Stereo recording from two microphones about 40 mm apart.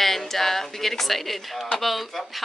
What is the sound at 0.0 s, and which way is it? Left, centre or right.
Speech, centre.